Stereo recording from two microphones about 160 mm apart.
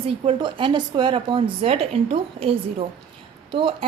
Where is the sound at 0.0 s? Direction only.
35° right (ahead or behind).